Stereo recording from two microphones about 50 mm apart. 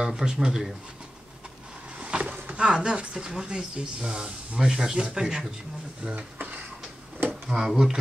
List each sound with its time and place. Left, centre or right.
0.0 s speech: centre
2.0 s a sound: right
2.5 s speech: centre
7.4 s speech: centre